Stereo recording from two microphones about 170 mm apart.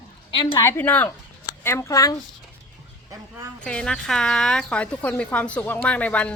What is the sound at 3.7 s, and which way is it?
A woman's voice, 5° left (ahead or behind).